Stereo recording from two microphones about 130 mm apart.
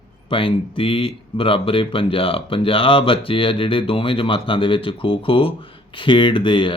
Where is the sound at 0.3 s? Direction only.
45° left (ahead or behind).